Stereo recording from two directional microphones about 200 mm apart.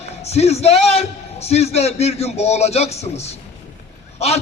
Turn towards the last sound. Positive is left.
turn(degrees=30)  # may be behind; listen again after turning